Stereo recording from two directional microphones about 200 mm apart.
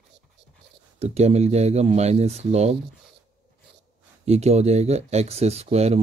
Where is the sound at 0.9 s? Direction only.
30° right (ahead or behind).